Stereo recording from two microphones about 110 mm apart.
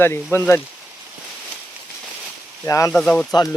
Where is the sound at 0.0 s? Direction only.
20° left (ahead or behind).